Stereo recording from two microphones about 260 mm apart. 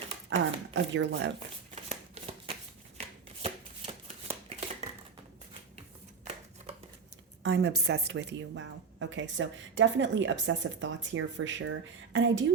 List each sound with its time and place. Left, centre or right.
0.3 s a woman's voice: right
1.7 s shuffling cards: right
3.4 s chopping: right
7.4 s a woman's voice: right